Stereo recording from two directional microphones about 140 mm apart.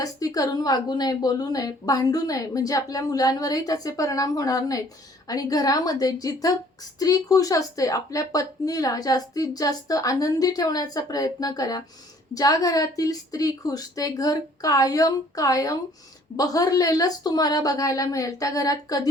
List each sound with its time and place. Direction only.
0.0 s speech: 25° left (ahead or behind)